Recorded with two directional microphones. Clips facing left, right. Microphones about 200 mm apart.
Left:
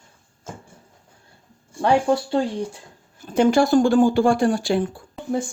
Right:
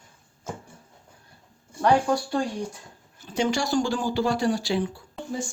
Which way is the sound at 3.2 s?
55° left (ahead or behind).